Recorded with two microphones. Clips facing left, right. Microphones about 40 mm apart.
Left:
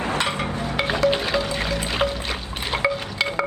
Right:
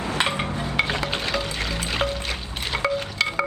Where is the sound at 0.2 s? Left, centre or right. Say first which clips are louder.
Even; right.